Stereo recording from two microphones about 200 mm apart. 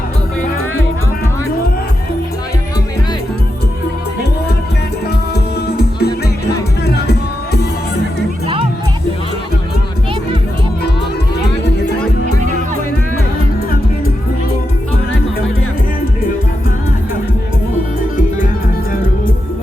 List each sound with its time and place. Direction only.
5.3 s music: 55° left (ahead or behind)